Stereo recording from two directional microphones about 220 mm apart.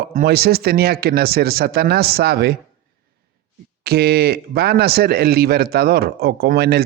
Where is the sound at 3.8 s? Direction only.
45° right (ahead or behind).